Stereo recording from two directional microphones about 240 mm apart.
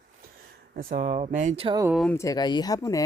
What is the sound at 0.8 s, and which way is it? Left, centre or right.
Speech, right.